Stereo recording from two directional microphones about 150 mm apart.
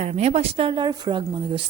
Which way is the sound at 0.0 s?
45° right (ahead or behind).